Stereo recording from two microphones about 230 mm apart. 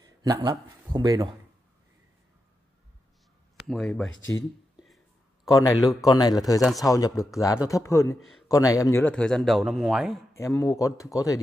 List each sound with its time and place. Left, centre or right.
0.2 s speech: centre
3.6 s a man's voice: centre
4.1 s speech: left
5.5 s speech: centre
6.6 s a man's voice: centre
6.9 s speech: centre
8.2 s a man's voice: centre
8.5 s a man's voice: centre
10.3 s speech: centre